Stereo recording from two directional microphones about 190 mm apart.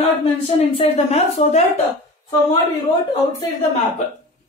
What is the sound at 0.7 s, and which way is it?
Speech, 35° left (ahead or behind).